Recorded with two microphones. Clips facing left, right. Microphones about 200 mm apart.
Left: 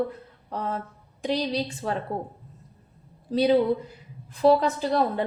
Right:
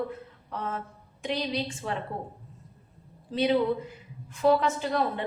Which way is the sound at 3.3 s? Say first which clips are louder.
Left 4 dB; 40° left (ahead or behind).